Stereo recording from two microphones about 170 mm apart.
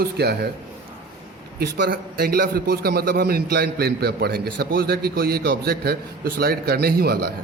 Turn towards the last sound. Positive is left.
turn(degrees=-65)  # may be behind; listen again after turning